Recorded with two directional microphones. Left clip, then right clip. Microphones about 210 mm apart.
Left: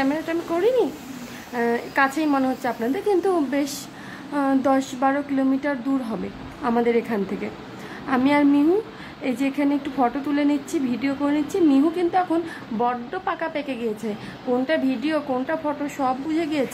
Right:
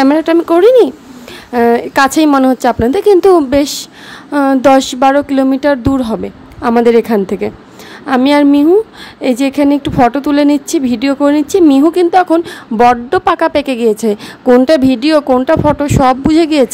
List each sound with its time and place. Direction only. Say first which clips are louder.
0.0 s a woman's voice: right 15 dB; 50° right (ahead or behind)